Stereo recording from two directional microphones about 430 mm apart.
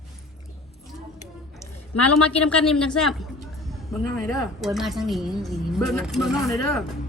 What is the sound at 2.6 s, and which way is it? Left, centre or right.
A woman's voice, centre.